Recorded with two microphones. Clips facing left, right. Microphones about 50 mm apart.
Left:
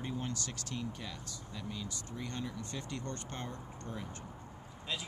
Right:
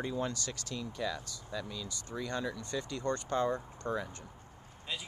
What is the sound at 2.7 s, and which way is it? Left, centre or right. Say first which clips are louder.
Speech: right 7 dB; right.